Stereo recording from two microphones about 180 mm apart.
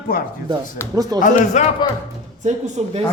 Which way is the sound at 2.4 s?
40° right (ahead or behind).